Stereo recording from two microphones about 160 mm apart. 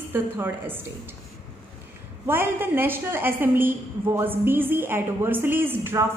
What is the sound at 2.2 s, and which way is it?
A woman's voice, 15° right (ahead or behind).